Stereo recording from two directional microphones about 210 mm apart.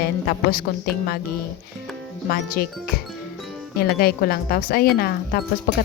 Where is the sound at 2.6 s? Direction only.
45° left (ahead or behind).